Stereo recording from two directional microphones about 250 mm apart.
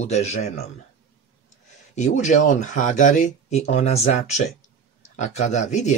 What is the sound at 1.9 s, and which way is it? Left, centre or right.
Speech, left.